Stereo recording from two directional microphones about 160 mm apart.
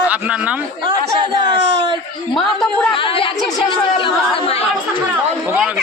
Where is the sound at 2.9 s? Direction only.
35° left (ahead or behind).